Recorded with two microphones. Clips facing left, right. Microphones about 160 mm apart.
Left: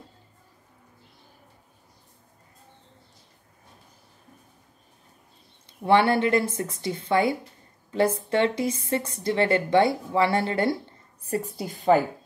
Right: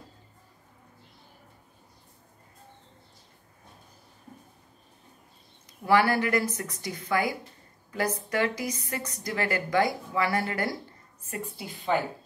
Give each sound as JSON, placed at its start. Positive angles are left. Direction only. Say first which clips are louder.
{"t": 5.7, "sound": "a woman's voice", "louder": "left 3 dB", "side_deg": 25}